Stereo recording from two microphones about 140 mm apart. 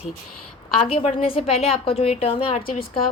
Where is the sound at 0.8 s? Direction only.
40° left (ahead or behind).